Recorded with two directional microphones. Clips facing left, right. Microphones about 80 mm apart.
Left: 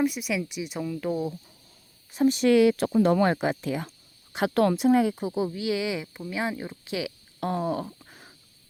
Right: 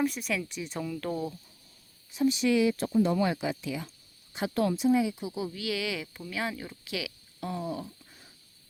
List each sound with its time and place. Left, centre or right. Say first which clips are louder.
0.0 s speech: left 3 dB; centre
2.1 s speech: left 5 dB; left
5.2 s speech: left 6 dB; left
7.3 s a sound: left 7 dB; left